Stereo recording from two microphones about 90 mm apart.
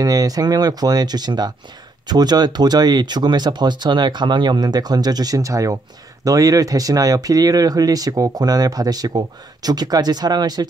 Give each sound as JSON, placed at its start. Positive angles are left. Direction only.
{"t": 0.0, "sound": "speech", "side_deg": -45}